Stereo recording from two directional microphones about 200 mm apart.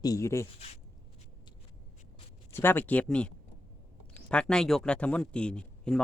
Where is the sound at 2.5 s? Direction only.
10° left (ahead or behind).